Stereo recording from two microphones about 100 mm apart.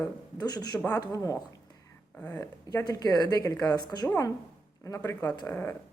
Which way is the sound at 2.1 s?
15° left (ahead or behind).